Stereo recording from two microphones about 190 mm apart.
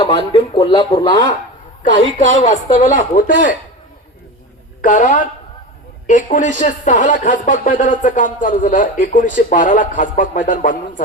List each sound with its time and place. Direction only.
0.0 s speech: 30° left (ahead or behind)
2.4 s speech: 40° left (ahead or behind)
4.8 s speech: 45° left (ahead or behind)